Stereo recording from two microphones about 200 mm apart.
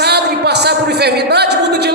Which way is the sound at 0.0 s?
55° right (ahead or behind).